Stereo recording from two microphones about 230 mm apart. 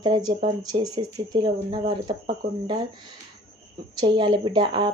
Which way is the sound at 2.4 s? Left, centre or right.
Right.